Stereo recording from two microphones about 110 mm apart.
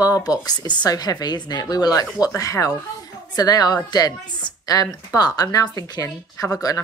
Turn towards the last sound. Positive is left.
turn(degrees=30)  # may be behind; listen again after turning